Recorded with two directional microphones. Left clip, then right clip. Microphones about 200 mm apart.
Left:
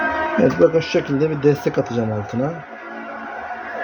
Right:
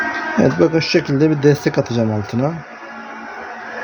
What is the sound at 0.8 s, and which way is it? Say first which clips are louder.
Speech: right 2 dB; 55° right (ahead or behind).